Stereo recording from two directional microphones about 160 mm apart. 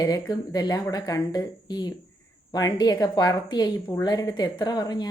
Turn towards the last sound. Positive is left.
turn(degrees=25)  # may be behind; listen again after turning